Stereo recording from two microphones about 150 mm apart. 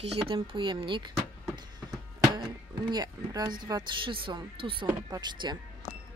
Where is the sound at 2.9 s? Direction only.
25° right (ahead or behind).